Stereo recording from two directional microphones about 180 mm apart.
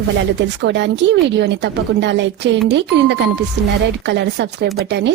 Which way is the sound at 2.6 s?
75° right (ahead or behind).